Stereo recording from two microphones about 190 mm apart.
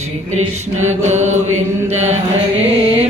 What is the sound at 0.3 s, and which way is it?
Mantra, 90° right.